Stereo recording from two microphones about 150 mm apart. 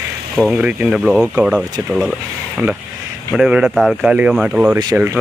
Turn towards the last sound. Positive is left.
turn(degrees=-10)  # may be behind; listen again after turning